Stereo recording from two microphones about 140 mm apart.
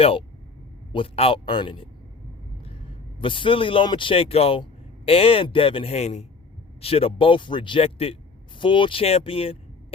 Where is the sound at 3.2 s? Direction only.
35° left (ahead or behind); by 6.2 s 55° left (ahead or behind).